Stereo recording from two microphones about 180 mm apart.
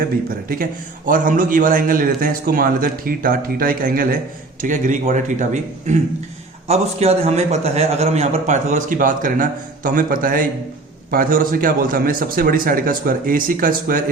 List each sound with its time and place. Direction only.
0.4 s a man's voice: 50° right (ahead or behind)